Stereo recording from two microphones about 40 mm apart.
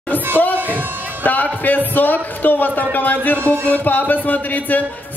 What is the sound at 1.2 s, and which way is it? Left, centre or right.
Speech, left.